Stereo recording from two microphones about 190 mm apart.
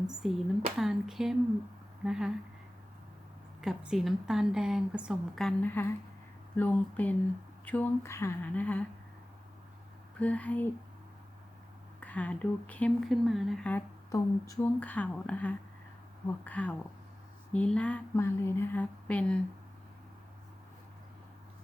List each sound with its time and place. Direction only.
0.2 s a woman's voice: centre (ahead or behind)
3.6 s a woman's voice: centre (ahead or behind)
10.2 s speech: 5° left (ahead or behind)
11.9 s speech: 5° left (ahead or behind)